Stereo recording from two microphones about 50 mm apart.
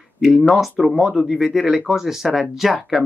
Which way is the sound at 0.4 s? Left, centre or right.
Centre.